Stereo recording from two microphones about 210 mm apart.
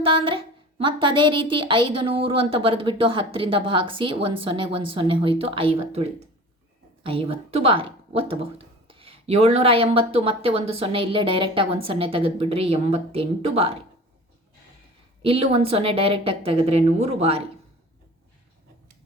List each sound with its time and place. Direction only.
0.0 s a woman's voice: 25° right (ahead or behind)
15.2 s a woman's voice: 25° right (ahead or behind)